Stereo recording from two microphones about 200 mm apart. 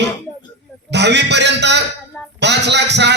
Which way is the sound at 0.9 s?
60° right (ahead or behind).